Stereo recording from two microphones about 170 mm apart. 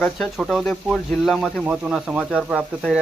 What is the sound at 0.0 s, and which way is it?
Speech, centre (ahead or behind).